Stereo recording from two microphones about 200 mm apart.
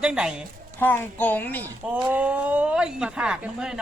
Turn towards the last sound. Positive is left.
turn(degrees=-5)  # may be behind; listen again after turning